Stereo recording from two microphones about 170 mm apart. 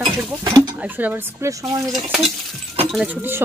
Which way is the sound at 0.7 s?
10° right (ahead or behind).